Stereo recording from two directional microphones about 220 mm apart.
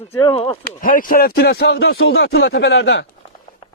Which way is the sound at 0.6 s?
40° left (ahead or behind).